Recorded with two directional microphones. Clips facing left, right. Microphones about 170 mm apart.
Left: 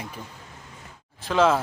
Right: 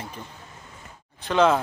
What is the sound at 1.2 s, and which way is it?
Speech, centre (ahead or behind).